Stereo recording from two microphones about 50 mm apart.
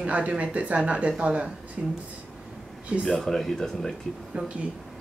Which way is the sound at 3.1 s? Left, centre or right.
Centre.